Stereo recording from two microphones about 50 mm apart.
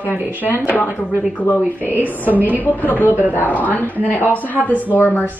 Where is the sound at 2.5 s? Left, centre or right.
Left.